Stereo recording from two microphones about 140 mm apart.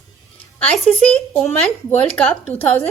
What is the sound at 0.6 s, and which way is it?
A woman's voice, 10° left (ahead or behind).